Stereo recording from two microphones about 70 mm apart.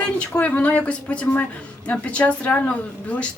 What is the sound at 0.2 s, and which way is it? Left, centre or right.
Speech, centre.